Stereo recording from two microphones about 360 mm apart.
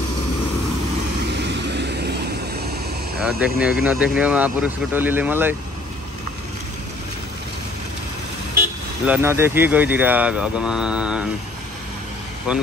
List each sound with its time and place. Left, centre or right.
1.5 s vehicle: right
3.2 s speech: centre
9.0 s speech: centre
12.5 s speech: centre